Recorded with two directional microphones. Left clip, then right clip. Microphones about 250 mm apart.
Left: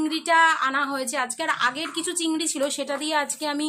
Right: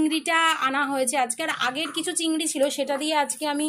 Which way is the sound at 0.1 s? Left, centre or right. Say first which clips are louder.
Left 3 dB; centre.